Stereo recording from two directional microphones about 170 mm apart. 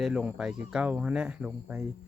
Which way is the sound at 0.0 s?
5° right (ahead or behind).